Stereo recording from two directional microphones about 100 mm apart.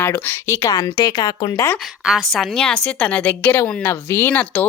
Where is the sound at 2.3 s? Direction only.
5° left (ahead or behind).